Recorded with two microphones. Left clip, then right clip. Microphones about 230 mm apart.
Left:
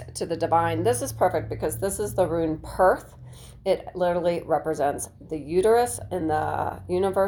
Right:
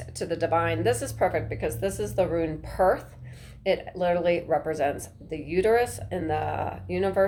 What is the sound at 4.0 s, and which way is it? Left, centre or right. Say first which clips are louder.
A woman's voice: right 2 dB; left.